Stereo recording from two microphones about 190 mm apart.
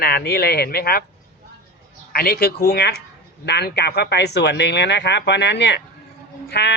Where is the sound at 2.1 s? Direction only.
55° left (ahead or behind).